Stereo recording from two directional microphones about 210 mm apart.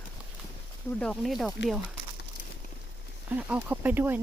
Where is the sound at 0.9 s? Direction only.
5° left (ahead or behind).